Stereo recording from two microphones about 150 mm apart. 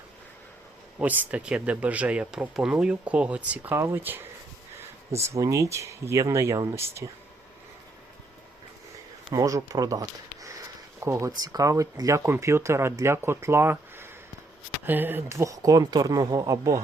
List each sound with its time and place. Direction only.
0.9 s speech: 10° right (ahead or behind)
5.2 s speech: 20° right (ahead or behind)
9.3 s speech: 25° right (ahead or behind)